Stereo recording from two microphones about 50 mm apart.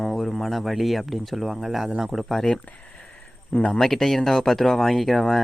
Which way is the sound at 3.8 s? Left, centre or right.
Centre.